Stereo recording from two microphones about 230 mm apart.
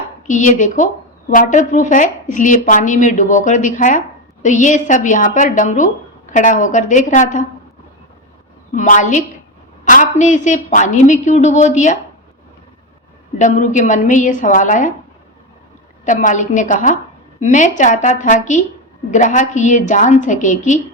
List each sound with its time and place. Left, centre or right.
0.3 s a woman's voice: left
8.7 s a woman's voice: left
13.4 s a woman's voice: left
16.0 s a woman's voice: left